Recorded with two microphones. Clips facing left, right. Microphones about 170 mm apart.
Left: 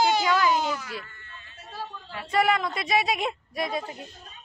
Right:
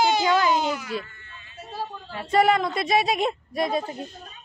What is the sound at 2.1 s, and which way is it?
Speech, 30° right (ahead or behind).